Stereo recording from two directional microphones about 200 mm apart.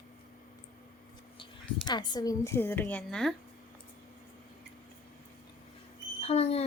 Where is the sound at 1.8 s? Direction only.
20° left (ahead or behind); by 3.3 s 5° left (ahead or behind).